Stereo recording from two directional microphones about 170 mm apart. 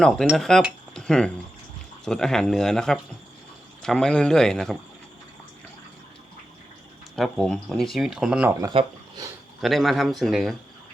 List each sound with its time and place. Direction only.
0.0 s speech: centre (ahead or behind)
7.2 s speech: centre (ahead or behind)
8.7 s speech: 25° right (ahead or behind)
9.6 s speech: centre (ahead or behind)